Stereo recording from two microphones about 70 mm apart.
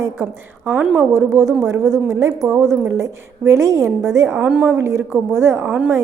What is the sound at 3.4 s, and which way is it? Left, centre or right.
Speech, right.